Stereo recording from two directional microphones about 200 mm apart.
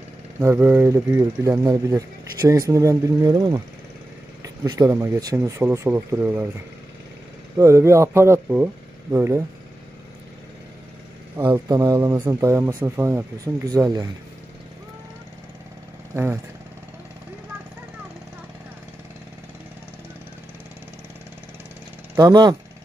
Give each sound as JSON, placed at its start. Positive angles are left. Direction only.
{"t": 0.4, "sound": "speech", "side_deg": -10}
{"t": 7.5, "sound": "speech", "side_deg": -15}
{"t": 11.3, "sound": "speech", "side_deg": -15}
{"t": 22.1, "sound": "speech", "side_deg": -20}